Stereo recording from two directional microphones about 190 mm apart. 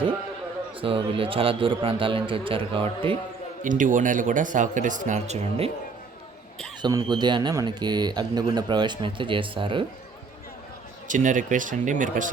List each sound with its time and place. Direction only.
0.8 s speech: 30° right (ahead or behind)
3.6 s speech: 45° right (ahead or behind)
6.8 s speech: 20° right (ahead or behind)
11.1 s speech: 45° right (ahead or behind)